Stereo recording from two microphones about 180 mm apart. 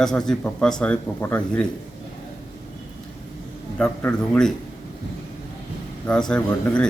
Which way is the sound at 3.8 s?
5° left (ahead or behind).